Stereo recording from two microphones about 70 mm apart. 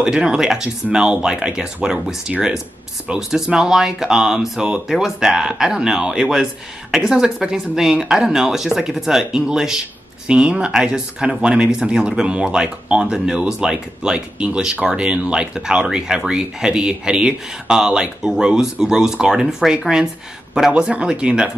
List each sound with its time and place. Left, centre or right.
0.0 s speech: centre